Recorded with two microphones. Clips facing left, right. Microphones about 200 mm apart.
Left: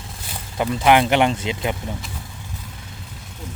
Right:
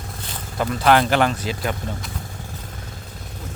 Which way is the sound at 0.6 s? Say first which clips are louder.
Left 1 dB; 15° left (ahead or behind).